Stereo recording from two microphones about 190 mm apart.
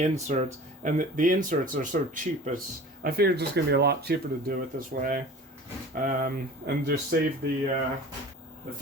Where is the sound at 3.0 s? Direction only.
55° right (ahead or behind).